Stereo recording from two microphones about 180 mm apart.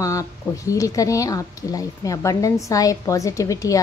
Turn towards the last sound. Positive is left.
turn(degrees=20)  # may be behind; listen again after turning